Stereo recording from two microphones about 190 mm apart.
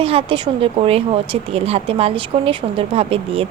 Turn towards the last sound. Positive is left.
turn(degrees=-30)  # may be behind; listen again after turning